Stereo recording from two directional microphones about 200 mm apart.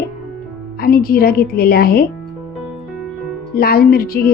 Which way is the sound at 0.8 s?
50° left (ahead or behind).